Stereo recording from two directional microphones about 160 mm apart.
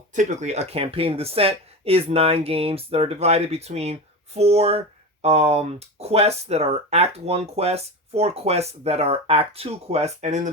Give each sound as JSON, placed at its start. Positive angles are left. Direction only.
{"t": 0.1, "sound": "speech", "side_deg": -50}